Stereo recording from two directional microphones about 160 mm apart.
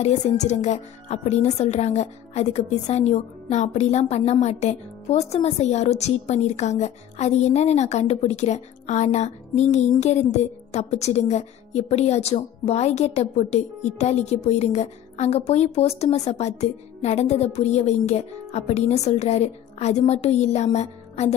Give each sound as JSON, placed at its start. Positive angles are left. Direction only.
{"t": 0.0, "sound": "speech", "side_deg": 45}